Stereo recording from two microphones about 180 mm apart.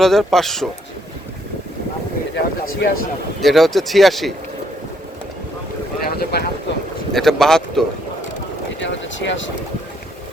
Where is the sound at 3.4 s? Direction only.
Centre (ahead or behind).